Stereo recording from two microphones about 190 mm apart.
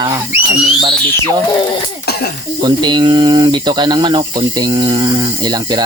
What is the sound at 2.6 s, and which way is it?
Speech, 20° right (ahead or behind).